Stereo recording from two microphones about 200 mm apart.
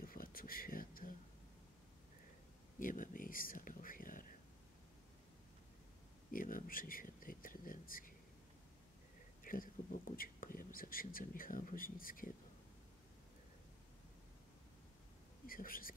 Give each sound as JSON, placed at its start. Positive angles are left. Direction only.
{"t": 0.0, "sound": "a sound", "side_deg": 45}
{"t": 2.8, "sound": "whispering", "side_deg": 45}
{"t": 6.3, "sound": "speech", "side_deg": 45}
{"t": 9.4, "sound": "speech", "side_deg": 45}
{"t": 15.4, "sound": "speech", "side_deg": 45}